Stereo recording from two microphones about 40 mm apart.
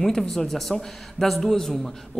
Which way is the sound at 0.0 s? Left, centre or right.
Centre.